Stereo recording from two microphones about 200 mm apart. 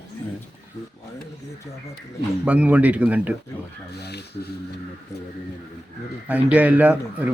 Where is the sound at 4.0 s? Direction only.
55° left (ahead or behind).